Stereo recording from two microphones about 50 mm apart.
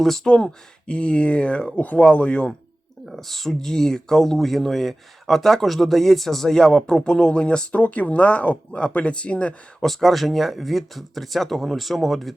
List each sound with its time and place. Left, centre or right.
0.3 s speech: centre
3.1 s speech: centre; by 9.6 s left
9.8 s speech: centre